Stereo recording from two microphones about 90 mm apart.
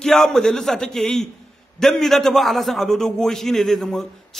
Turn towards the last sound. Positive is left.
turn(degrees=5)  # may be behind; listen again after turning